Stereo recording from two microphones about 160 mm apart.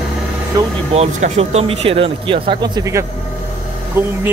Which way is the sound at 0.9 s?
40° right (ahead or behind).